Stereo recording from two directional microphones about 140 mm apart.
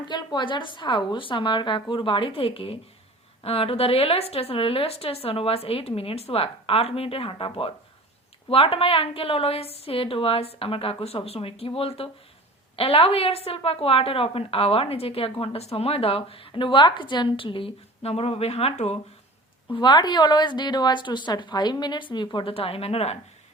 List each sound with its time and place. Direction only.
0.1 s a woman's voice: 30° left (ahead or behind); by 18.9 s 50° left (ahead or behind)
19.7 s a woman's voice: 30° left (ahead or behind)